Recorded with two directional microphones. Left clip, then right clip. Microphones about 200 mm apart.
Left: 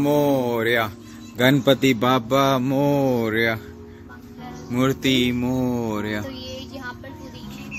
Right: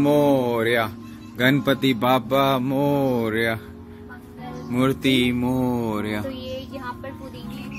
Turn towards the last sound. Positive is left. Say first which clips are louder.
# even
turn(degrees=0)  # may be behind; listen again after turning